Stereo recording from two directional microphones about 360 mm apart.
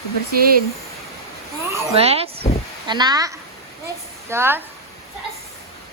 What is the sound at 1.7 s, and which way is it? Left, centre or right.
A woman's voice, centre.